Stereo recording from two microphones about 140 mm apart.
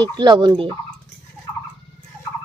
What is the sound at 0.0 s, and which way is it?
Fowl, 30° right (ahead or behind).